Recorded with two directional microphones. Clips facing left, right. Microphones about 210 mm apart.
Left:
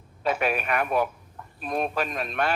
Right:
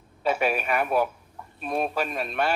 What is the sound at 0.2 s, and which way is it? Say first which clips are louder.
A man's voice: right 1 dB; 5° right (ahead or behind).